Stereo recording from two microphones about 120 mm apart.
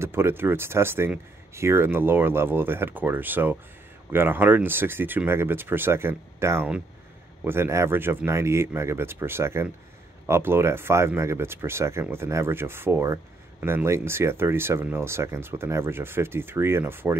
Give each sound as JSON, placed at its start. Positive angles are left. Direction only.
{"t": 0.0, "sound": "speech", "side_deg": -20}